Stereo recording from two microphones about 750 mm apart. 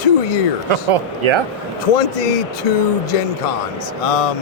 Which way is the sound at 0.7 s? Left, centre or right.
Right.